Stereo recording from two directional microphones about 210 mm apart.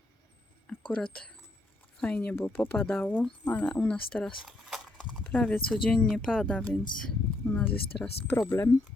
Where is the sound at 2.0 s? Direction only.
5° left (ahead or behind).